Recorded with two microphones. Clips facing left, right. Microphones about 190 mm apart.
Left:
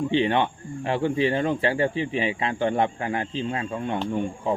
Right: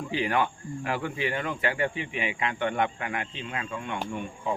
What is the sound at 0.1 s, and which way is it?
Speech, 25° left (ahead or behind).